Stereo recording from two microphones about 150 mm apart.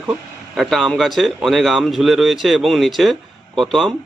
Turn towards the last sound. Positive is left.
turn(degrees=0)  # may be behind; listen again after turning